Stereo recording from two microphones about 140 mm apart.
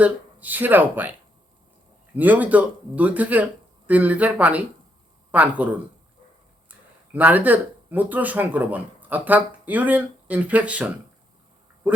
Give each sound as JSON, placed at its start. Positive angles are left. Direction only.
{"t": 0.0, "sound": "speech", "side_deg": -10}
{"t": 2.1, "sound": "speech", "side_deg": -10}
{"t": 6.7, "sound": "speech", "side_deg": -10}